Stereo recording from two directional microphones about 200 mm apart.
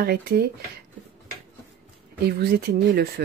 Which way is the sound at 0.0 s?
50° right (ahead or behind).